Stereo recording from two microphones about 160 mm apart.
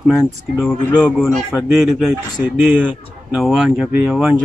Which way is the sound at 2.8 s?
5° right (ahead or behind).